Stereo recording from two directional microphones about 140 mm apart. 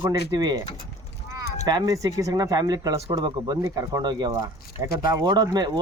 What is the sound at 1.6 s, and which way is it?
Speech, 30° right (ahead or behind).